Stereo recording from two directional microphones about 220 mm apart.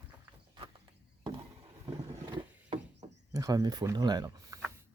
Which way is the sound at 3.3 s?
15° right (ahead or behind).